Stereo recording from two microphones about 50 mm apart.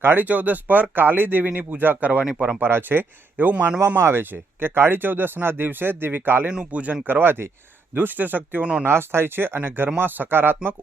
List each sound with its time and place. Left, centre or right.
0.0 s speech: right
2.6 s speech: right
3.8 s speech: right
6.7 s speech: right
7.0 s speech: right
7.9 s speech: right
8.8 s speech: right